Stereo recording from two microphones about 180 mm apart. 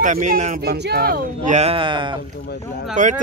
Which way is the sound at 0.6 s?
65° right (ahead or behind).